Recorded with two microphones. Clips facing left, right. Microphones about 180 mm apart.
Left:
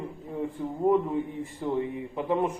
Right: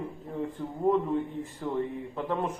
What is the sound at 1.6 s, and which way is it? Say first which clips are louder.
Speech: left 2 dB; 20° left (ahead or behind).